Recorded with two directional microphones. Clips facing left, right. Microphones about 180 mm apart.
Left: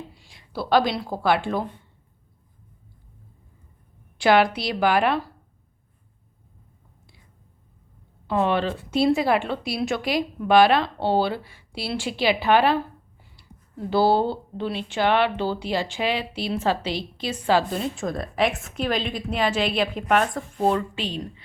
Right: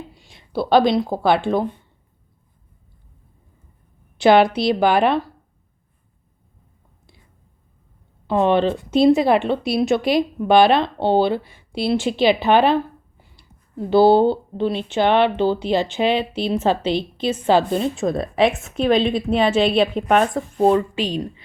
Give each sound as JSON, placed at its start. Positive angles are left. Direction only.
{"t": 0.1, "sound": "speech", "side_deg": -20}
{"t": 4.2, "sound": "speech", "side_deg": -25}
{"t": 8.3, "sound": "speech", "side_deg": -25}